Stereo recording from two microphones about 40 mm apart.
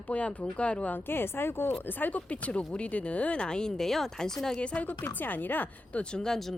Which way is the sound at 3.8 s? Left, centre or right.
Centre.